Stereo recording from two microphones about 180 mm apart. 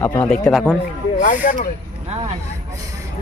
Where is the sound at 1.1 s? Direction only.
45° left (ahead or behind).